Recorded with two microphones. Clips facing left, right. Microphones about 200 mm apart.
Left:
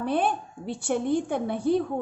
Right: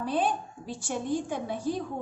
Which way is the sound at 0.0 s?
60° left (ahead or behind).